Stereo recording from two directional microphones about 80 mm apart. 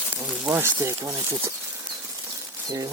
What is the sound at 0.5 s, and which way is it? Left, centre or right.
Speech, right.